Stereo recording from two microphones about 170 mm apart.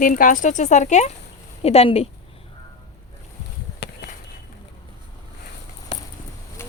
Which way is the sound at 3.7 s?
80° left.